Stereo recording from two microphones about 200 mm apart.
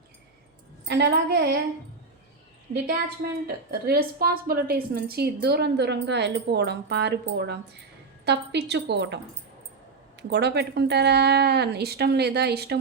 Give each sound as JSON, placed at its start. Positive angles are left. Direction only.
{"t": 0.9, "sound": "a woman's voice", "side_deg": -55}
{"t": 3.4, "sound": "a woman's voice", "side_deg": -50}